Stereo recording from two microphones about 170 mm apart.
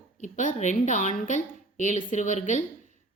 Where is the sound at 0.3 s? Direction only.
45° left (ahead or behind).